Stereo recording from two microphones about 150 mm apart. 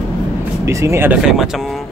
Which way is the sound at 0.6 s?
20° right (ahead or behind).